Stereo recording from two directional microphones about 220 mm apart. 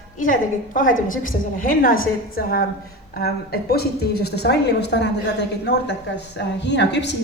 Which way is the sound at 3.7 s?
45° left (ahead or behind).